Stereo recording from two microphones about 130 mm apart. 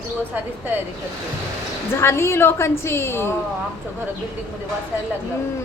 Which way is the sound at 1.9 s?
20° left (ahead or behind).